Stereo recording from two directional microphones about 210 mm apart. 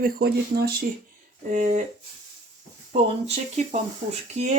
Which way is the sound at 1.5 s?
35° right (ahead or behind).